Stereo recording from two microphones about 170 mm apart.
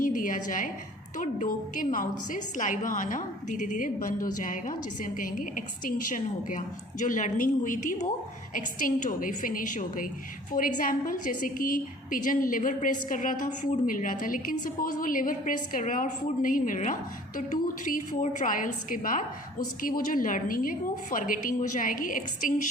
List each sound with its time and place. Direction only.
0.0 s a woman's voice: 50° left (ahead or behind)